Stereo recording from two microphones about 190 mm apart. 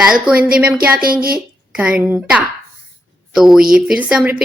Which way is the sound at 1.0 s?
50° right (ahead or behind).